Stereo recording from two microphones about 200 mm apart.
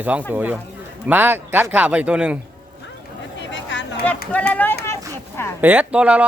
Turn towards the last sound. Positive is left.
turn(degrees=-5)  # may be behind; listen again after turning